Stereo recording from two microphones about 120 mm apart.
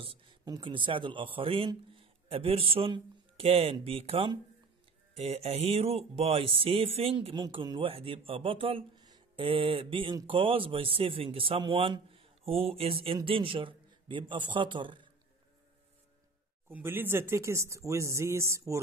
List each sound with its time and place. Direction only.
0.0 s a sound: 50° right (ahead or behind)
0.5 s a man's voice: 40° right (ahead or behind)
5.1 s music: 55° right (ahead or behind)
7.0 s a man's voice: 55° right (ahead or behind)
16.6 s speech: 20° right (ahead or behind)